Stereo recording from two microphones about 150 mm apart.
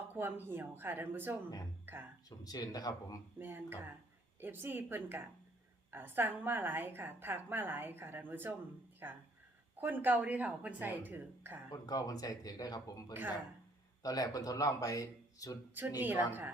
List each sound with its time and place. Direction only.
0.1 s a woman's voice: 15° right (ahead or behind)
2.4 s speech: 25° left (ahead or behind)
3.3 s a woman's voice: 15° right (ahead or behind)
11.7 s speech: 25° left (ahead or behind)
16.0 s a woman's voice: 15° right (ahead or behind)